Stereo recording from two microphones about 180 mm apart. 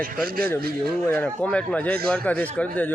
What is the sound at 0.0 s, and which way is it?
Speech, 55° right (ahead or behind).